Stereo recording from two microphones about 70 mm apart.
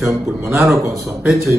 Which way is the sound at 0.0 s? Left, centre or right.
Right.